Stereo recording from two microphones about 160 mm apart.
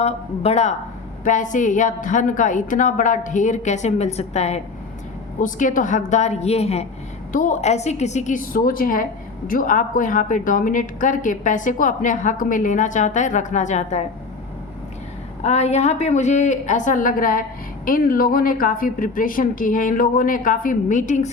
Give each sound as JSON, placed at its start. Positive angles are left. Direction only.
{"t": 0.0, "sound": "speech", "side_deg": 40}
{"t": 1.2, "sound": "a woman's voice", "side_deg": 50}
{"t": 5.4, "sound": "a woman's voice", "side_deg": 55}
{"t": 15.4, "sound": "a woman's voice", "side_deg": 45}